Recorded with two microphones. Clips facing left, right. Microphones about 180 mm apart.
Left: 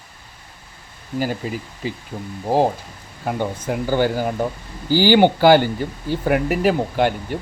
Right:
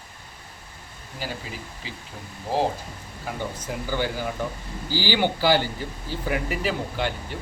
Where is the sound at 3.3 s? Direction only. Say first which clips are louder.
Left 8 dB; 55° left (ahead or behind).